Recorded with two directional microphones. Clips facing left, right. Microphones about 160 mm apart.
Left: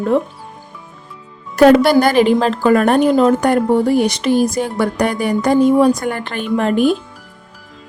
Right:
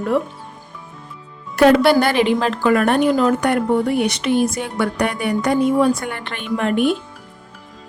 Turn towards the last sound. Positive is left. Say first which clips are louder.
# left 3 dB
turn(degrees=35)  # may be behind; listen again after turning